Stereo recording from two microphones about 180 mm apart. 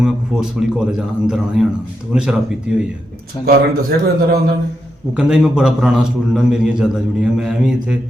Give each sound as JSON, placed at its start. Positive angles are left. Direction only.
{"t": 0.0, "sound": "a man's voice", "side_deg": -5}
{"t": 3.4, "sound": "a man's voice", "side_deg": -60}
{"t": 5.1, "sound": "a man's voice", "side_deg": -5}